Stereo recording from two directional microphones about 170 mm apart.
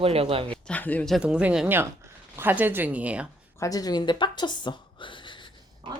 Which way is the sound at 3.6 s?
20° left (ahead or behind).